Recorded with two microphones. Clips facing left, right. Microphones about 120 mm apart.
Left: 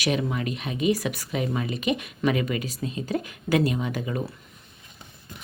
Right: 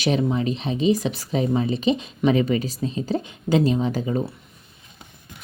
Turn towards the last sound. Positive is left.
turn(degrees=-25)  # may be behind; listen again after turning